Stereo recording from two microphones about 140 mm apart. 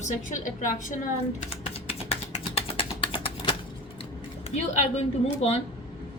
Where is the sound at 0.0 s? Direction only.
65° left (ahead or behind).